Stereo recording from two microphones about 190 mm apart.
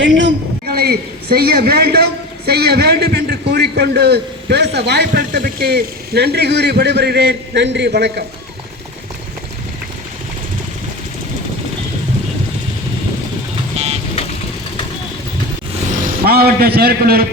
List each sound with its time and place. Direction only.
0.0 s a sound: 75° right (ahead or behind); by 2.0 s 55° right (ahead or behind)
2.5 s speech: 55° right (ahead or behind)
16.2 s speech: 55° right (ahead or behind)